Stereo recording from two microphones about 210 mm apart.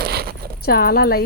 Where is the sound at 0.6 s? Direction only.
45° left (ahead or behind).